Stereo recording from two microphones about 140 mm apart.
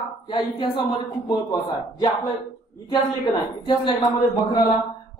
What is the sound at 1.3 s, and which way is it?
A woman's voice, 30° left (ahead or behind).